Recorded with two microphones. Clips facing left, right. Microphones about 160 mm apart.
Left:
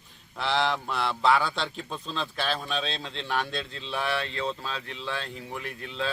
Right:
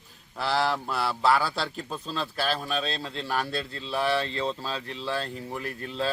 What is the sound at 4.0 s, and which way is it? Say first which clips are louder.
Speech: right 4 dB; 35° right (ahead or behind).